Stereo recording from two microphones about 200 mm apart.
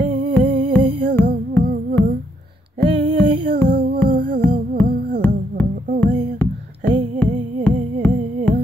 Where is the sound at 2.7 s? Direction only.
30° right (ahead or behind).